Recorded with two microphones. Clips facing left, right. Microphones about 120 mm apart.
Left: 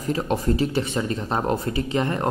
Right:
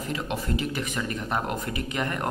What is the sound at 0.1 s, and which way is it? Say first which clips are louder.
Speech: left 8 dB; 35° left (ahead or behind).